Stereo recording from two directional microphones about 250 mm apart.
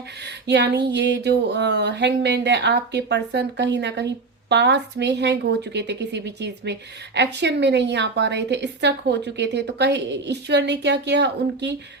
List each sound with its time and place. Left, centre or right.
0.3 s speech: right